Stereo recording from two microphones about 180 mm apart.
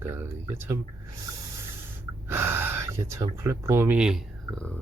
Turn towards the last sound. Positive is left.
turn(degrees=5)  # may be behind; listen again after turning